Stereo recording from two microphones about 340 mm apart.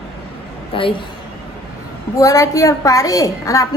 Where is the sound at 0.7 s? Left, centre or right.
Centre.